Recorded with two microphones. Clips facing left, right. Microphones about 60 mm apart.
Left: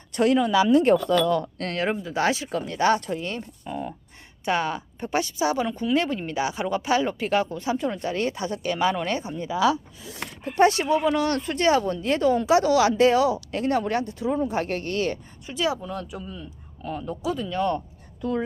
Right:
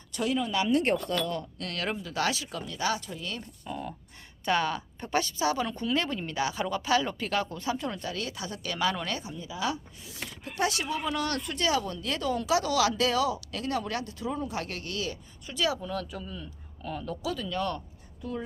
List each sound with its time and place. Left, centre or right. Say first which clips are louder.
0.1 s speech: left 9 dB; left
1.7 s speech: left 6 dB; left
3.2 s speech: left 5 dB; left
8.1 s speech: left 9 dB; left
9.3 s speech: left 10 dB; left
10.2 s speech: left 11 dB; left
15.4 s speech: left 3 dB; left
18.2 s speech: left 9 dB; left